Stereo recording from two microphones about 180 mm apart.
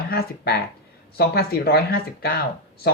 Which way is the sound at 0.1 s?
60° left (ahead or behind).